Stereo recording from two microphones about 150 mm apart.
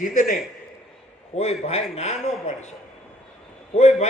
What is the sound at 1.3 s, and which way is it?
Speech, 45° left (ahead or behind).